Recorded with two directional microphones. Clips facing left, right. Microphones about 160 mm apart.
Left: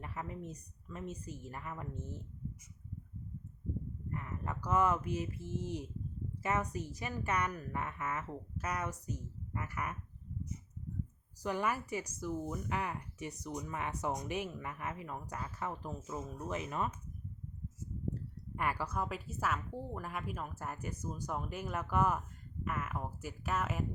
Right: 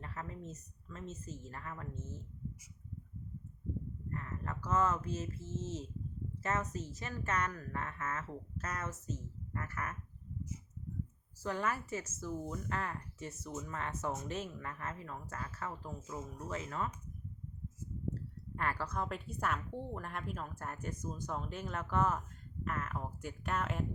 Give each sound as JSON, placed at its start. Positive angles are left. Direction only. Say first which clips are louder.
{"t": 0.0, "sound": "speech", "louder": "left 2 dB", "side_deg": 15}
{"t": 4.1, "sound": "speech", "louder": "left 1 dB", "side_deg": 15}
{"t": 11.4, "sound": "speech", "louder": "left 2 dB", "side_deg": 15}
{"t": 18.1, "sound": "speech", "louder": "left 1 dB", "side_deg": 15}